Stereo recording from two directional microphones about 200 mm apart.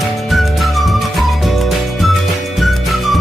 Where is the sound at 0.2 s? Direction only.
Centre (ahead or behind).